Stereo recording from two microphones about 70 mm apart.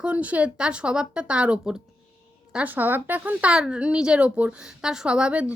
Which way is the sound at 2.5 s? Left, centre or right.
Right.